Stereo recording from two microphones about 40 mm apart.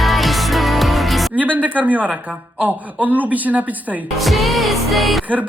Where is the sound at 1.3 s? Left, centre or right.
Right.